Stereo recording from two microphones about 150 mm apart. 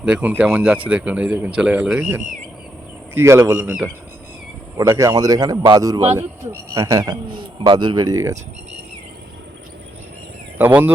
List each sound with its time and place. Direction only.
0.0 s speech: 10° right (ahead or behind)
4.8 s speech: 20° right (ahead or behind)
10.6 s speech: 10° right (ahead or behind)